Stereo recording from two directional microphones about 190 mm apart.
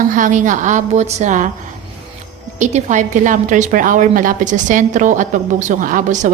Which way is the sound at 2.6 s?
40° right (ahead or behind).